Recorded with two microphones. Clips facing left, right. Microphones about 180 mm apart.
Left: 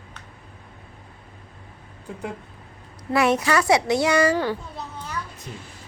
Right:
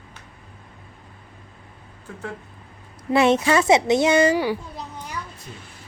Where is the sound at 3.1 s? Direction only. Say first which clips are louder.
Right 3 dB; 25° right (ahead or behind).